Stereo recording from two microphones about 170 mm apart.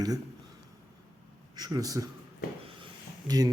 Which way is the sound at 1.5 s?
25° right (ahead or behind).